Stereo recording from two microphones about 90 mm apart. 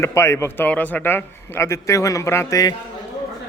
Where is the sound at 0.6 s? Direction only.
20° left (ahead or behind).